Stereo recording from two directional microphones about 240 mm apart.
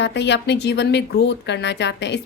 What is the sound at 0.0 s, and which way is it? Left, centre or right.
A woman's voice, left.